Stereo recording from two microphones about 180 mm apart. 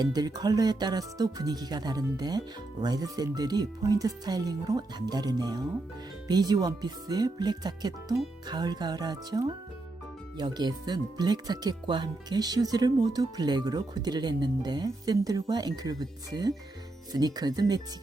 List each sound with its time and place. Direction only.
0.0 s speech: 20° right (ahead or behind)